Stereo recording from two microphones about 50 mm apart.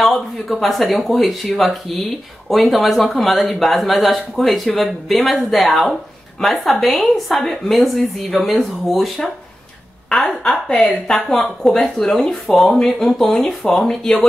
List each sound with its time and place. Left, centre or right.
0.0 s speech: centre
10.0 s a woman's voice: centre